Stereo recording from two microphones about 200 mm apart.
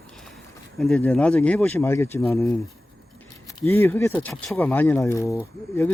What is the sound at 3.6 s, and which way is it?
Speech, 15° left (ahead or behind).